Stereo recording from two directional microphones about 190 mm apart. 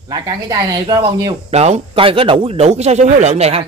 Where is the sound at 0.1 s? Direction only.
20° right (ahead or behind).